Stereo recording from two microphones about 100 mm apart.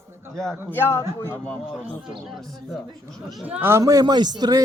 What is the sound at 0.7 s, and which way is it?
Speech, 25° left (ahead or behind).